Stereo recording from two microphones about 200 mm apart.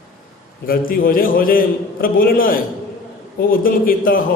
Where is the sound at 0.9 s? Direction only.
45° left (ahead or behind).